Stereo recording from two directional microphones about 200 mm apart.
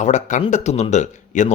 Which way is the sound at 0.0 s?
35° left (ahead or behind).